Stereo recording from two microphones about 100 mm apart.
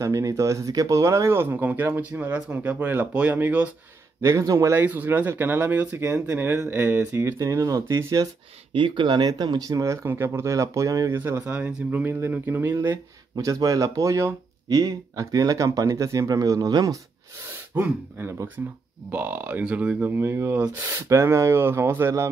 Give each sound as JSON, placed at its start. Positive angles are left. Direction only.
{"t": 0.0, "sound": "speech", "side_deg": -35}
{"t": 4.2, "sound": "speech", "side_deg": -30}
{"t": 4.7, "sound": "speech", "side_deg": -20}
{"t": 6.7, "sound": "speech", "side_deg": -15}
{"t": 8.7, "sound": "speech", "side_deg": -55}
{"t": 10.0, "sound": "speech", "side_deg": -25}
{"t": 11.1, "sound": "speech", "side_deg": -25}
{"t": 13.4, "sound": "speech", "side_deg": -35}
{"t": 17.7, "sound": "speech", "side_deg": -20}
{"t": 20.9, "sound": "speech", "side_deg": -30}